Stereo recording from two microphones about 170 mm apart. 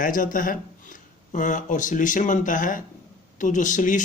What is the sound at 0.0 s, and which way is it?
Speech, 50° left (ahead or behind).